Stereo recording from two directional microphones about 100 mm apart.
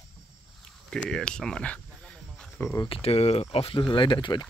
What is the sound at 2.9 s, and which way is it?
Speech, 90° left.